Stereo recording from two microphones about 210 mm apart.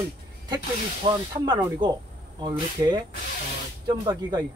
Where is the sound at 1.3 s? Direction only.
20° right (ahead or behind).